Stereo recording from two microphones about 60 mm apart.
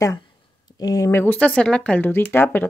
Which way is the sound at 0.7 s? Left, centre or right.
Left.